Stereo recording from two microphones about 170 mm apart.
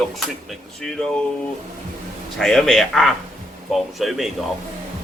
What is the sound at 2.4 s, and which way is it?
Speech, 5° left (ahead or behind).